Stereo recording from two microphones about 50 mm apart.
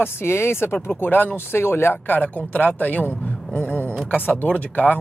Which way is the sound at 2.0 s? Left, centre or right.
Left.